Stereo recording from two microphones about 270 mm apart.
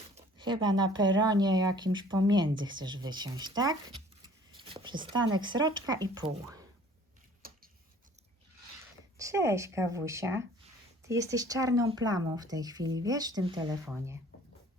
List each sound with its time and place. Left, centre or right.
0.2 s speech: centre
7.4 s tick-tock: right
9.1 s speech: centre